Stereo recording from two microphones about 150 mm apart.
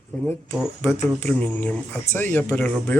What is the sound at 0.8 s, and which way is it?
Speech, 10° left (ahead or behind).